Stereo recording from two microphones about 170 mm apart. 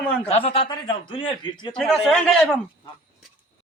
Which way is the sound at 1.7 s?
Centre (ahead or behind).